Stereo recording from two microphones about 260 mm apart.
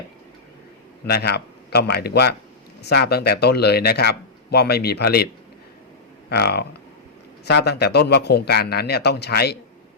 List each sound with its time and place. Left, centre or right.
1.0 s speech: left
6.3 s speech: left